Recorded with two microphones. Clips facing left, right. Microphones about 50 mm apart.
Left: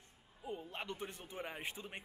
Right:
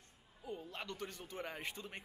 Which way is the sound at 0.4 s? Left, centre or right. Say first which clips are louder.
Left 1 dB; left.